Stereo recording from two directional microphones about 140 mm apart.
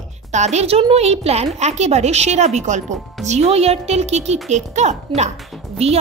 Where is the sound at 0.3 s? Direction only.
55° right (ahead or behind).